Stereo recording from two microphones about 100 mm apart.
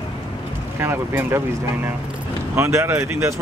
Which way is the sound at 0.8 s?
25° right (ahead or behind).